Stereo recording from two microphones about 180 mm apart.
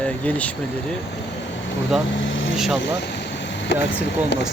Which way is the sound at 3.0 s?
75° left (ahead or behind).